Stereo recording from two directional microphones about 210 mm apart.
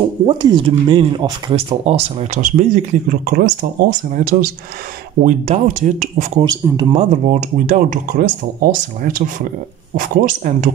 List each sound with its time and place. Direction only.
0.3 s speech: 25° right (ahead or behind)
6.4 s speech: 15° right (ahead or behind)
7.0 s speech: 35° right (ahead or behind)